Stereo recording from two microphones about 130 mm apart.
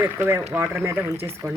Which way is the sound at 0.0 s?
20° right (ahead or behind).